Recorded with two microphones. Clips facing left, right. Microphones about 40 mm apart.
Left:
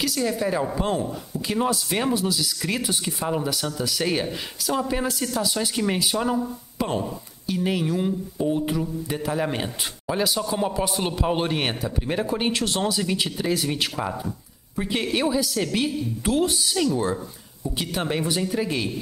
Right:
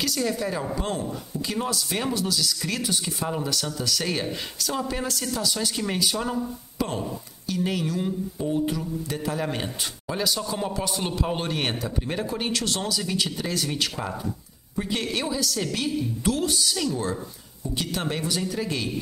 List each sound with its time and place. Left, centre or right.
0.0 s a woman's voice: centre